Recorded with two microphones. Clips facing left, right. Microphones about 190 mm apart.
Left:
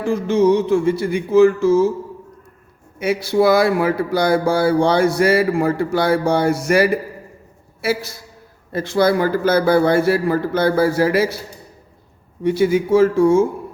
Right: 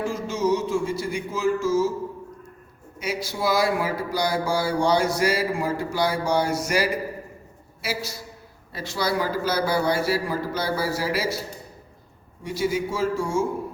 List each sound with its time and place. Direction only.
0.0 s speech: 60° left (ahead or behind)
3.0 s a man's voice: 60° left (ahead or behind)
12.4 s speech: 60° left (ahead or behind)